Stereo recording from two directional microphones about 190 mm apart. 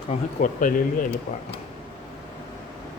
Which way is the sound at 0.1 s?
45° left (ahead or behind).